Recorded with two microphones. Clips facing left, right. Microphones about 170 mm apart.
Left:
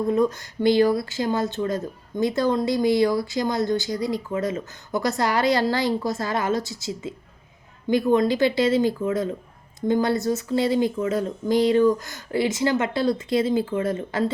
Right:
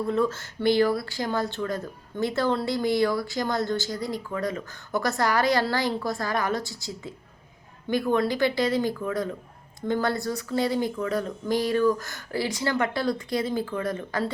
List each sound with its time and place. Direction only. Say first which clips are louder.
0.1 s speech: left 3 dB; 15° left (ahead or behind)